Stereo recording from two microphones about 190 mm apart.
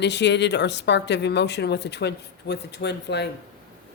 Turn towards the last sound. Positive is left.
turn(degrees=60)  # may be behind; listen again after turning